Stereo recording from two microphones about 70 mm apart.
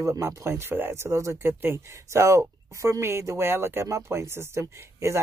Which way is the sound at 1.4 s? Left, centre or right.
Right.